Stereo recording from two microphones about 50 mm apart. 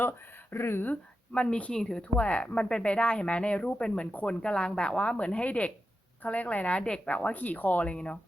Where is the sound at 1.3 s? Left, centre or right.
Left.